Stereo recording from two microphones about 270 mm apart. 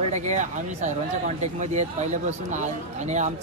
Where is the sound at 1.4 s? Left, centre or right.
Right.